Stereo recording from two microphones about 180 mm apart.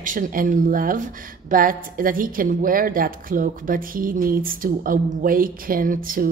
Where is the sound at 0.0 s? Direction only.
50° right (ahead or behind).